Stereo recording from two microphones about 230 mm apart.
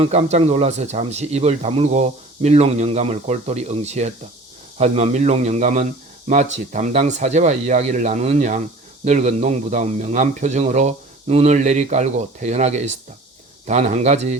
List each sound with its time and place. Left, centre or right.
0.0 s speech: right